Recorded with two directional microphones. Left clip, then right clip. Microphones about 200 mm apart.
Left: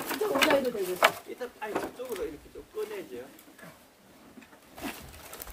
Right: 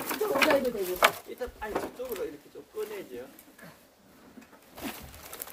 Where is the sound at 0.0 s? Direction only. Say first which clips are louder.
Even; 5° right (ahead or behind).